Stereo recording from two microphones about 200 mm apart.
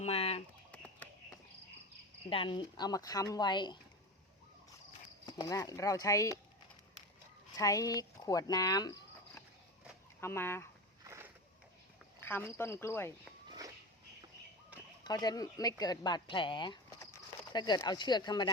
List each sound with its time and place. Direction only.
0.0 s chicken: 30° left (ahead or behind)
0.7 s a sound: 5° left (ahead or behind)
2.3 s speech: 25° left (ahead or behind)
5.2 s speech: 20° left (ahead or behind)
7.5 s speech: 15° left (ahead or behind)
11.0 s a sound: 15° right (ahead or behind)
12.2 s cricket: 10° left (ahead or behind)
12.5 s speech: 10° left (ahead or behind)
15.0 s speech: 20° left (ahead or behind)